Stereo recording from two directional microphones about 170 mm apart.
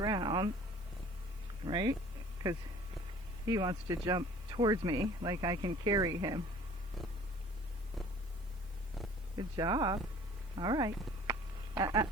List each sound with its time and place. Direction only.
0.0 s a sound: 25° right (ahead or behind)
1.6 s speech: 25° right (ahead or behind)
3.4 s speech: 20° right (ahead or behind)
8.0 s purr: centre (ahead or behind)
9.4 s speech: 25° right (ahead or behind)
11.3 s a sound: 20° right (ahead or behind)